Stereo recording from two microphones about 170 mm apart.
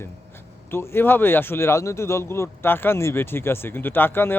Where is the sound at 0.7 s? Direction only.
15° left (ahead or behind).